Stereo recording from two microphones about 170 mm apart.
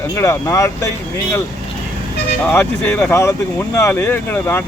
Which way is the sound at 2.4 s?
10° left (ahead or behind).